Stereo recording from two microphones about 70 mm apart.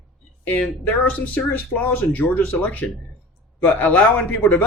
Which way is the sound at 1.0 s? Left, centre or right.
Left.